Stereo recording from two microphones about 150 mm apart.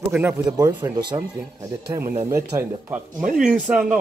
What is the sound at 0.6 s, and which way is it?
Speech, 30° right (ahead or behind).